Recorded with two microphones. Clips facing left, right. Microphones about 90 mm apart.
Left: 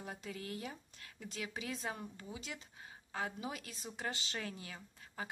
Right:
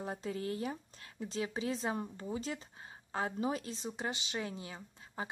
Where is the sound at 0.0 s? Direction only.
35° right (ahead or behind).